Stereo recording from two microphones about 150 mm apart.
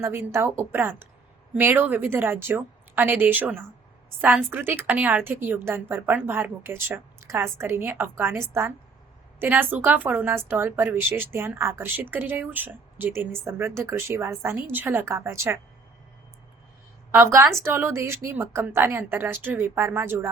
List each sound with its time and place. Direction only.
0.0 s a woman's voice: 15° right (ahead or behind)
17.1 s a woman's voice: 20° right (ahead or behind)